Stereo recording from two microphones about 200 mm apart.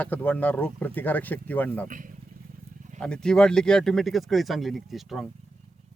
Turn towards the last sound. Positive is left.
turn(degrees=0)  # may be behind; listen again after turning